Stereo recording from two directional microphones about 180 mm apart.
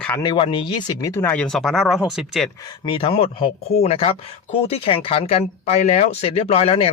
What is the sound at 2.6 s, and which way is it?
Speech, 25° left (ahead or behind).